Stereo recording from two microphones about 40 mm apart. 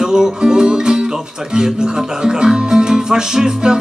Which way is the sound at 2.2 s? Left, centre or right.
Centre.